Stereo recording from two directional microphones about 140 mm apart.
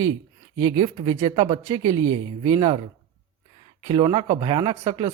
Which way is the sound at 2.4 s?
40° right (ahead or behind).